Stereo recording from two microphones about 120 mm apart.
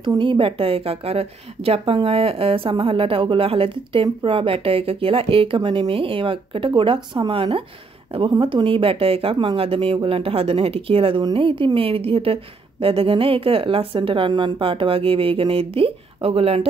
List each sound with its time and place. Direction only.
0.2 s speech: 45° right (ahead or behind)
5.6 s speech: 40° right (ahead or behind); by 16.6 s 55° right (ahead or behind)